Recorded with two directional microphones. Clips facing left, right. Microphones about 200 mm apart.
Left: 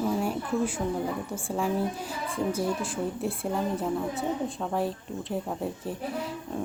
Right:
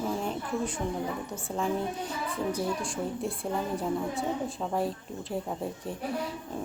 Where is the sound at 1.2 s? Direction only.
30° left (ahead or behind).